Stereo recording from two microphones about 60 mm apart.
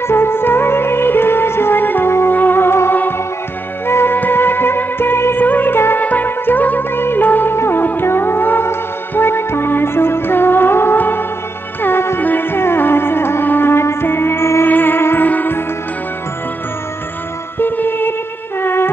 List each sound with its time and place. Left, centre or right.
0.1 s music: left
17.6 s music: left